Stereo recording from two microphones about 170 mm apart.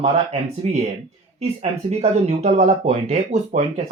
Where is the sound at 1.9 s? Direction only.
40° right (ahead or behind).